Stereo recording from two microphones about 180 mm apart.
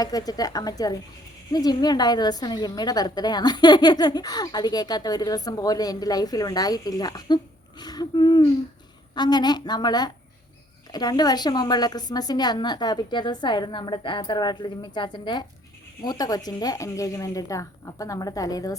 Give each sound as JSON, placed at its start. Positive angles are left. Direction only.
{"t": 0.0, "sound": "a woman's voice", "side_deg": 20}